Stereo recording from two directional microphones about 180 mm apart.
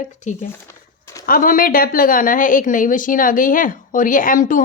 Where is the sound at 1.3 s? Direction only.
50° left (ahead or behind).